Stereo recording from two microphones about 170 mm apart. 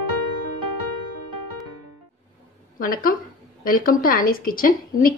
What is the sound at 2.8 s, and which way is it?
A woman's voice, 60° left (ahead or behind).